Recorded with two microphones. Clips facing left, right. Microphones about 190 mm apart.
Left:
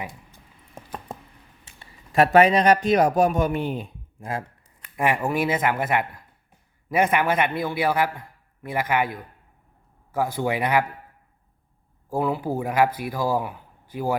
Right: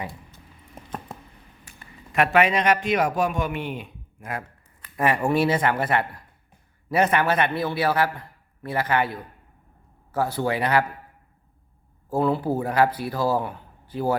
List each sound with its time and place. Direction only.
0.0 s a sound: 10° left (ahead or behind)
1.6 s a man's voice: 30° left (ahead or behind)
4.9 s a man's voice: 10° left (ahead or behind)
10.2 s a man's voice: 15° left (ahead or behind)
12.1 s a man's voice: 10° left (ahead or behind)